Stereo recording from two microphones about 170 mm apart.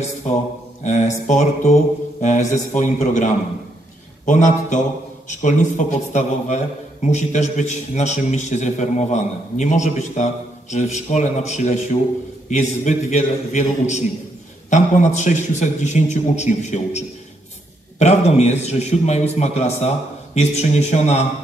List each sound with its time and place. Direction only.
0.8 s a man's voice: 45° left (ahead or behind)
4.3 s a man's voice: 45° left (ahead or behind)